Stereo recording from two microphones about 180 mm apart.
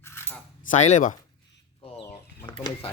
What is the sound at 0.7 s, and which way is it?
Speech, 40° left (ahead or behind).